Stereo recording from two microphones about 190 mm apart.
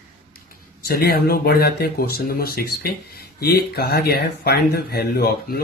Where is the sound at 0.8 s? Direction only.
55° left (ahead or behind).